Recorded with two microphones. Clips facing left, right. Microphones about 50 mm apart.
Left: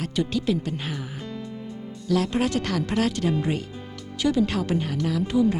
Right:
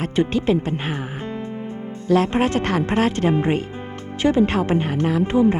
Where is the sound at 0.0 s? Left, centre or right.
Right.